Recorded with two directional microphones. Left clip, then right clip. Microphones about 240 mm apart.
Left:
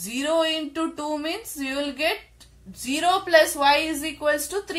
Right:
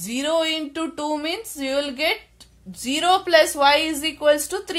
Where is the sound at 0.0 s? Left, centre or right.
Right.